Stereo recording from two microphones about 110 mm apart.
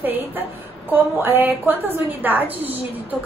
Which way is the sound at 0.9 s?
20° right (ahead or behind).